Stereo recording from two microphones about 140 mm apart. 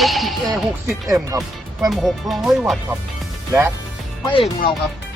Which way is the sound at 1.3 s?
25° right (ahead or behind).